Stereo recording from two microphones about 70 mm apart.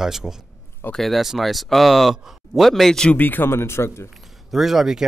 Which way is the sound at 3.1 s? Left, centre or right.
Left.